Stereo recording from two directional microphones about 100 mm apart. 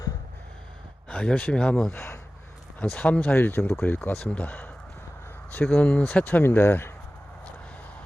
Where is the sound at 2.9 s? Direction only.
15° left (ahead or behind).